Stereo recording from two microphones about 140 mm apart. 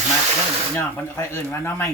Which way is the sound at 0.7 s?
15° left (ahead or behind).